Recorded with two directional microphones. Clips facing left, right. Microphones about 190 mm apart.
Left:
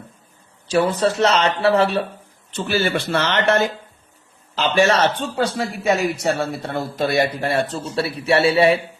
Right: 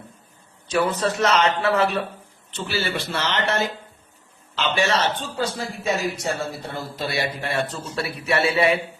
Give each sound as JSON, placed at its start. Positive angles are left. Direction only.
{"t": 0.7, "sound": "speech", "side_deg": 30}
{"t": 2.6, "sound": "speech", "side_deg": 55}
{"t": 4.5, "sound": "speech", "side_deg": 40}
{"t": 5.4, "sound": "speech", "side_deg": 70}